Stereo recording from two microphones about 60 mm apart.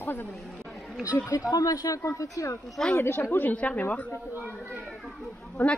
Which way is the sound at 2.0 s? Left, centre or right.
Left.